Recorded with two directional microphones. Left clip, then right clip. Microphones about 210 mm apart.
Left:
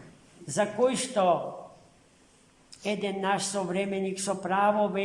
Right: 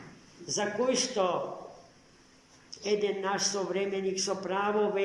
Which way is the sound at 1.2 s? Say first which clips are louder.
Left 7 dB; 60° left (ahead or behind).